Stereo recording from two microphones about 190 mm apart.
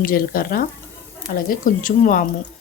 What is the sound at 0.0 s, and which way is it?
Speech, 50° left (ahead or behind).